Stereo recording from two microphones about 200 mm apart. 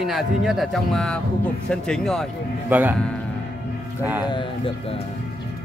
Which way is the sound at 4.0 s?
10° right (ahead or behind).